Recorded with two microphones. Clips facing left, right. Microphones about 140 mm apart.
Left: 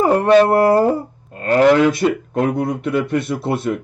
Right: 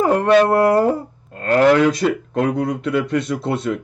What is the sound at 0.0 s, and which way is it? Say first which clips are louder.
Speech: left 2 dB; 10° left (ahead or behind).